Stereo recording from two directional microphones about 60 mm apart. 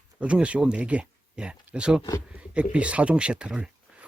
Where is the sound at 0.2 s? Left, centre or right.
Centre.